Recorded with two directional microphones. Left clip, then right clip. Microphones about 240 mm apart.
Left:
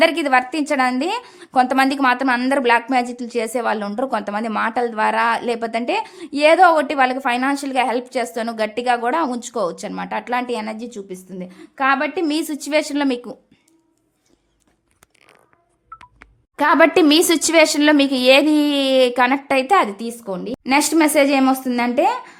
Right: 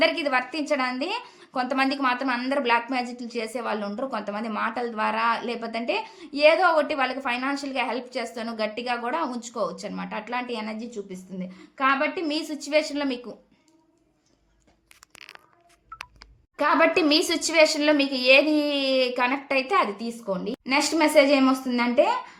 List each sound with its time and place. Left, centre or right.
0.0 s a woman's voice: left
16.6 s a woman's voice: left